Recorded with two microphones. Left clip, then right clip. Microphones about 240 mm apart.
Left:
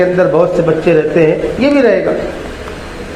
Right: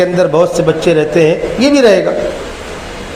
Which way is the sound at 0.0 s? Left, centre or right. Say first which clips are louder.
Even; right.